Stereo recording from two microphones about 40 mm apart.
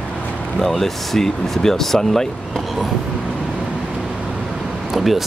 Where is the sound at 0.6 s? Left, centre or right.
Centre.